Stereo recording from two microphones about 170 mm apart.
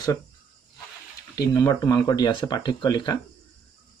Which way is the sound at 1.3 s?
20° left (ahead or behind).